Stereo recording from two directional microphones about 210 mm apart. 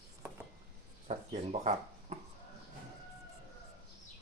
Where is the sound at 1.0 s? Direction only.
35° right (ahead or behind).